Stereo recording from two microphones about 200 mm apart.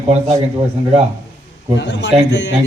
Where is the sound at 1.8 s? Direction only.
60° left (ahead or behind).